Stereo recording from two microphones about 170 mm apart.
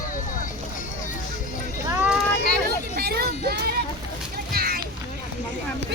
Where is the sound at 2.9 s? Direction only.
65° right (ahead or behind).